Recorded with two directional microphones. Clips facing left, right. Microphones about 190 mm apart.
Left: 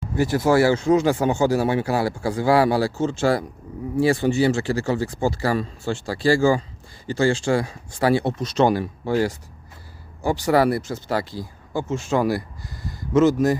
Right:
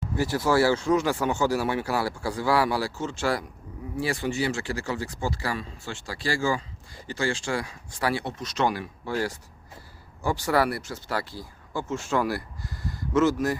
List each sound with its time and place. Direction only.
0.2 s speech: 20° left (ahead or behind)